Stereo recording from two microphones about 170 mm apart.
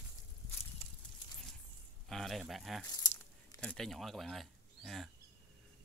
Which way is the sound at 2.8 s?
20° left (ahead or behind).